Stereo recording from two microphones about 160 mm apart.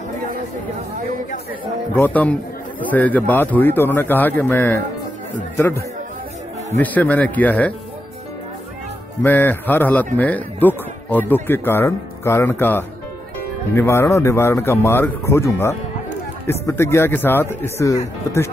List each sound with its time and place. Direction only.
2.0 s speech: 10° left (ahead or behind)
9.2 s speech: 10° left (ahead or behind)